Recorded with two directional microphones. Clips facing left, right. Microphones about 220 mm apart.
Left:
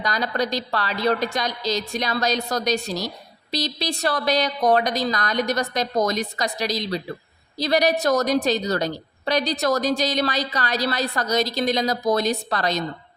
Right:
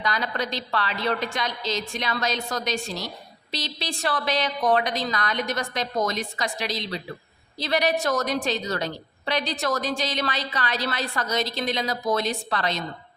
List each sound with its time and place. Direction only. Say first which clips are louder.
0.0 s a woman's voice: left 4 dB; 40° left (ahead or behind)